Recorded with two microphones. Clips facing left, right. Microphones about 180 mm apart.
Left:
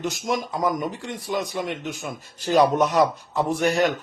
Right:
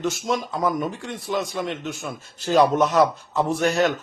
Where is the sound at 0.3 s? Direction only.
15° left (ahead or behind).